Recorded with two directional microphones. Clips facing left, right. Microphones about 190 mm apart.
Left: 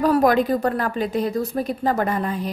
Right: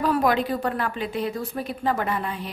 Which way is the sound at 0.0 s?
45° left (ahead or behind).